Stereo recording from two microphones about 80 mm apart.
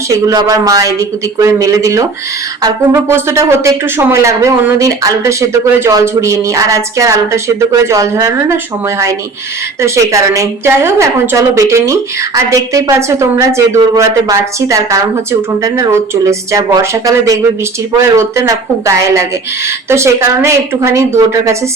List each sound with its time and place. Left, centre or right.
0.3 s a man's voice: right
2.9 s a woman's voice: right
9.8 s a woman's voice: right
18.0 s a woman's voice: right